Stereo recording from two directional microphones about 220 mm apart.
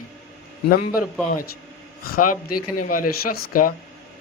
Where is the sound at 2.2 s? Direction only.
90° left.